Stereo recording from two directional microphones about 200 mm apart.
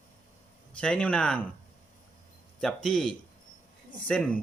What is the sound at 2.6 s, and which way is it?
Speech, centre (ahead or behind).